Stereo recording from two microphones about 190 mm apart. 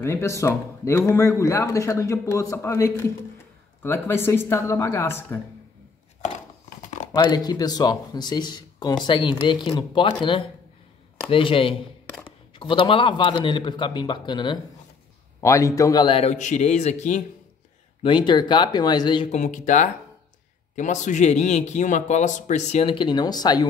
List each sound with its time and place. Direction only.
0.0 s speech: 15° left (ahead or behind)
7.2 s speech: 20° left (ahead or behind)
11.2 s speech: 30° left (ahead or behind)
18.0 s speech: 25° left (ahead or behind)
19.3 s speech: 40° left (ahead or behind); by 23.7 s 20° left (ahead or behind)